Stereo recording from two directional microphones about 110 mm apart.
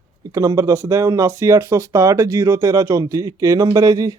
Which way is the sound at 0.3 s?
30° right (ahead or behind).